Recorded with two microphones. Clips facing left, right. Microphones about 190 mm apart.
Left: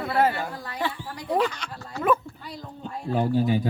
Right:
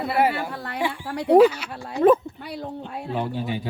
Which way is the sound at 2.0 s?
30° right (ahead or behind).